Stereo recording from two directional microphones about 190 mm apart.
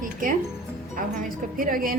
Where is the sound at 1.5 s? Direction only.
45° right (ahead or behind).